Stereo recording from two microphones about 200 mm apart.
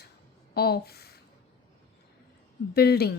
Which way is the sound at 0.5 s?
55° left (ahead or behind).